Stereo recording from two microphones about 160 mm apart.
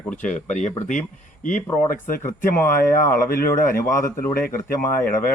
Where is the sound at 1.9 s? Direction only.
60° left (ahead or behind).